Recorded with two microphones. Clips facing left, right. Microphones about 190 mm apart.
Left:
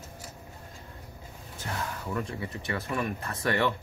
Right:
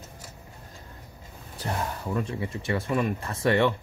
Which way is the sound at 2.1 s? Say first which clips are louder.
Right 4 dB; 25° right (ahead or behind).